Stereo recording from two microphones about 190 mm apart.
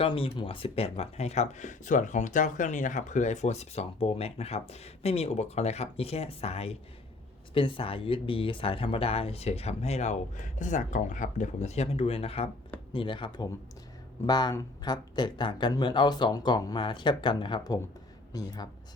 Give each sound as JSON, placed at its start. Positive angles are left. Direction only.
{"t": 0.0, "sound": "speech", "side_deg": 25}